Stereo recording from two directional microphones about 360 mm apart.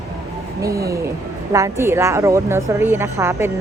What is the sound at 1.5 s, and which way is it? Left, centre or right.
Speech, centre.